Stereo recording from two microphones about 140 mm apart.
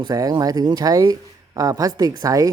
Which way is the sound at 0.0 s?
30° right (ahead or behind).